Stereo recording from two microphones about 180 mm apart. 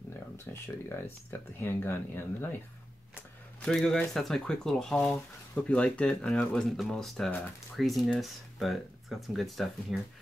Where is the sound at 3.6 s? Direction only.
5° left (ahead or behind).